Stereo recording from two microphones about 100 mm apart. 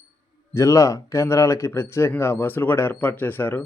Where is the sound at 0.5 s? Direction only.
30° left (ahead or behind).